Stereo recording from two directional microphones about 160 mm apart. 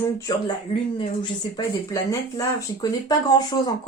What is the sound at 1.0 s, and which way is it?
Speech, 30° left (ahead or behind).